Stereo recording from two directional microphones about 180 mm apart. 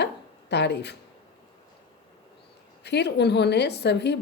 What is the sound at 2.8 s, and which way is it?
A woman's voice, 65° left (ahead or behind).